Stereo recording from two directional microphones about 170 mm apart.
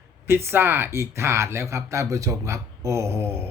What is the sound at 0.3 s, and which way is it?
Speech, 15° right (ahead or behind).